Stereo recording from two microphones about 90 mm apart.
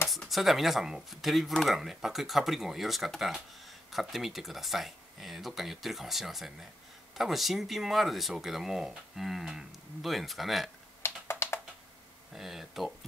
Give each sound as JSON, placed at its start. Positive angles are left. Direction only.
{"t": 0.1, "sound": "speech", "side_deg": 0}
{"t": 11.2, "sound": "computer keyboard", "side_deg": 30}
{"t": 12.3, "sound": "speech", "side_deg": 0}